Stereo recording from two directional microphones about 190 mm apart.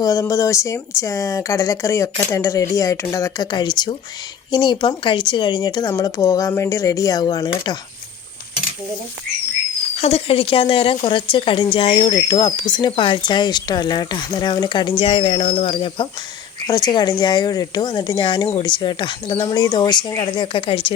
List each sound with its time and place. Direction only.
0.0 s speech: 15° left (ahead or behind)
10.0 s speech: 30° left (ahead or behind)